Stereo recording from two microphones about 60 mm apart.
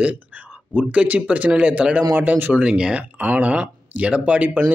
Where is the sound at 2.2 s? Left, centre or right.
Right.